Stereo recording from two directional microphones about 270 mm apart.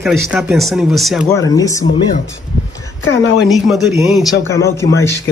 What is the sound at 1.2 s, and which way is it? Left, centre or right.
Speech, centre.